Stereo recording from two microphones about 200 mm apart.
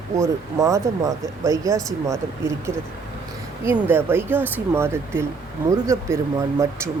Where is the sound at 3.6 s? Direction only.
10° right (ahead or behind).